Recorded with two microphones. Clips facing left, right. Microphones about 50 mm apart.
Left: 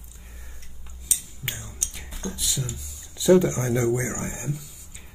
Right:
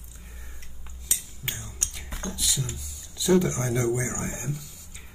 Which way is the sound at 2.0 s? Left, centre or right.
Right.